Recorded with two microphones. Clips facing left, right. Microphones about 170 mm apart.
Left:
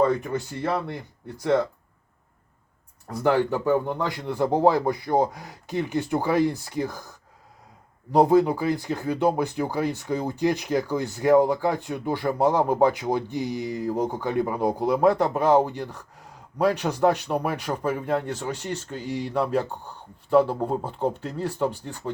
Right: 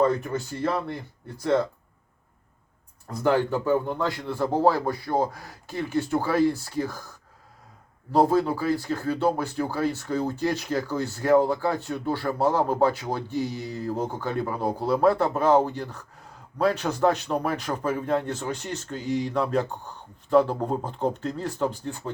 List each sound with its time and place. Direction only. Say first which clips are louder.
0.0 s speech: left 1 dB; 20° left (ahead or behind)
3.1 s speech: left 1 dB; 15° left (ahead or behind)
8.1 s speech: left 3 dB; 20° left (ahead or behind)